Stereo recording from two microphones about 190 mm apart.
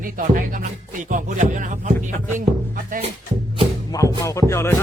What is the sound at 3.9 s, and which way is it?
Music, 15° left (ahead or behind).